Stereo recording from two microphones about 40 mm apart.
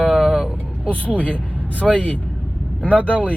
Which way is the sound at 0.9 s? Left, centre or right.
Left.